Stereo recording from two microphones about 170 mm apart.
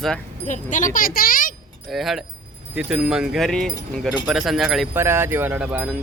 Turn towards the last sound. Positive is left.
turn(degrees=-5)  # may be behind; listen again after turning